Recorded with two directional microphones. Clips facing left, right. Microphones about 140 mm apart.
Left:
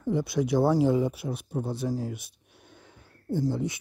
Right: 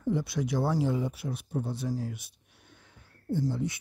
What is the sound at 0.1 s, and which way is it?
Speech, 10° left (ahead or behind).